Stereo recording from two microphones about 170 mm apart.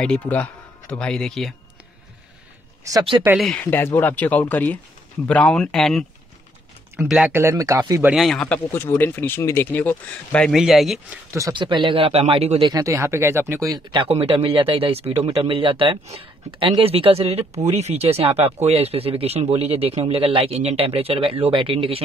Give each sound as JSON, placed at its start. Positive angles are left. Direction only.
{"t": 0.0, "sound": "speech", "side_deg": 5}
{"t": 2.8, "sound": "speech", "side_deg": -20}
{"t": 3.3, "sound": "speech", "side_deg": 5}
{"t": 7.1, "sound": "speech", "side_deg": -5}
{"t": 7.3, "sound": "speech", "side_deg": -15}
{"t": 8.1, "sound": "speech", "side_deg": 0}
{"t": 11.3, "sound": "speech", "side_deg": -25}
{"t": 12.7, "sound": "speech", "side_deg": -20}